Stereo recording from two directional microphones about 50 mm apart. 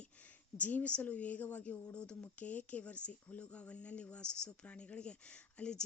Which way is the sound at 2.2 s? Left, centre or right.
Left.